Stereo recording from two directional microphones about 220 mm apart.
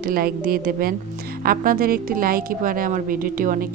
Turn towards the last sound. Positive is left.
turn(degrees=-40)  # may be behind; listen again after turning